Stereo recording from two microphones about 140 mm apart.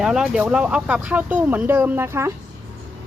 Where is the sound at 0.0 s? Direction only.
5° right (ahead or behind).